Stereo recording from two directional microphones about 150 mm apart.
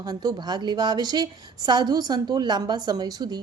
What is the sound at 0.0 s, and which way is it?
A woman's voice, 25° right (ahead or behind).